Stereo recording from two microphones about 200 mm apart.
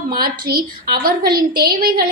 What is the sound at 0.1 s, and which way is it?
A woman's voice, 50° right (ahead or behind).